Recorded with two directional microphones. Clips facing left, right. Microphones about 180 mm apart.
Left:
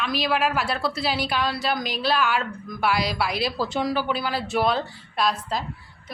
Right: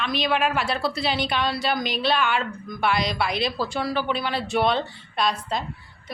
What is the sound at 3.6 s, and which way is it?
A woman's voice, 15° left (ahead or behind).